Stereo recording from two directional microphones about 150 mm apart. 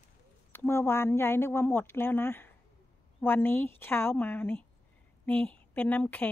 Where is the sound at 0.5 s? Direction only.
15° left (ahead or behind).